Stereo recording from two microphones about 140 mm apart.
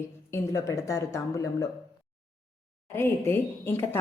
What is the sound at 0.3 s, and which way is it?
Speech, 20° left (ahead or behind).